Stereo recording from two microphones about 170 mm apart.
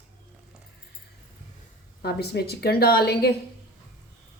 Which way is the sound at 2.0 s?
70° left (ahead or behind).